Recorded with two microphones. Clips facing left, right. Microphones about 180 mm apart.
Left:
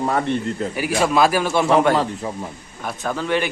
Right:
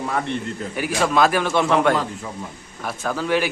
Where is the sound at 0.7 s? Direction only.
10° left (ahead or behind).